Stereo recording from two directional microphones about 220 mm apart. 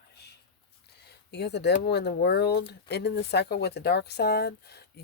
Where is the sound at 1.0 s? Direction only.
50° left (ahead or behind).